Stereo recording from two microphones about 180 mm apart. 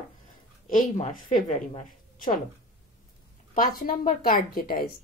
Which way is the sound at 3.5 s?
50° left (ahead or behind).